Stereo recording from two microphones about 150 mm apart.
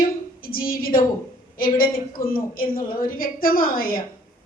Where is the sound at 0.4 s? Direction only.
75° left (ahead or behind).